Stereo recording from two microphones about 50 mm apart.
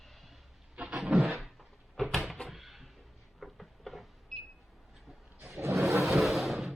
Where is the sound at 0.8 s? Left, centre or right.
Right.